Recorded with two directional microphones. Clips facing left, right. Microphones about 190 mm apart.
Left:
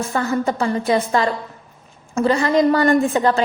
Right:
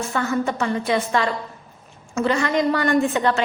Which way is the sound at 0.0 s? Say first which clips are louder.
Left 2 dB; 35° left (ahead or behind).